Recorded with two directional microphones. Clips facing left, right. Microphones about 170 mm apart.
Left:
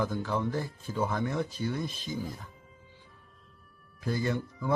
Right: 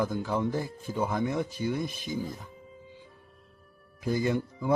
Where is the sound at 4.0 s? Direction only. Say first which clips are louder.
Right 3 dB; 15° right (ahead or behind).